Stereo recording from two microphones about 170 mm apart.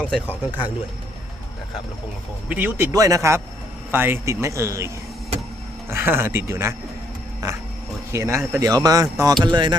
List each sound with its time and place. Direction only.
0.0 s speech: 10° left (ahead or behind)
2.5 s speech: 10° right (ahead or behind)
5.9 s speech: 15° right (ahead or behind)
8.1 s speech: 15° right (ahead or behind)